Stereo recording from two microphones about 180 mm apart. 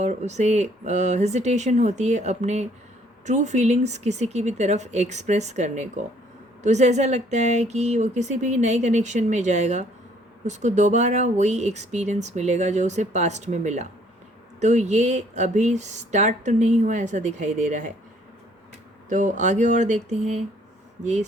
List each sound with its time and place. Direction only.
0.0 s speech: 40° right (ahead or behind)
19.0 s a sound: 45° right (ahead or behind)
21.0 s speech: 40° right (ahead or behind)